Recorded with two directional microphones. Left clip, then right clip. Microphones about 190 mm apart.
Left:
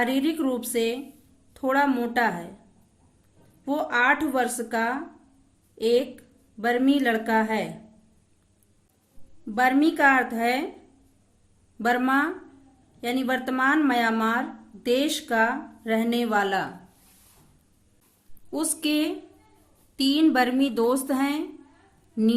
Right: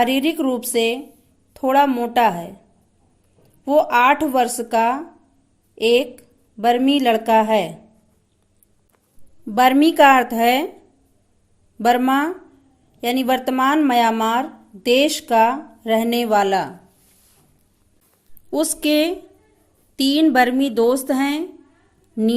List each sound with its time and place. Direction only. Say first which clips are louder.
0.0 s speech: right 6 dB; 30° right (ahead or behind)
3.7 s a woman's voice: right 8 dB; 30° right (ahead or behind)
9.6 s a woman's voice: right 8 dB; 35° right (ahead or behind)
11.8 s speech: right 6 dB; 30° right (ahead or behind)
18.5 s a woman's voice: right 8 dB; 30° right (ahead or behind)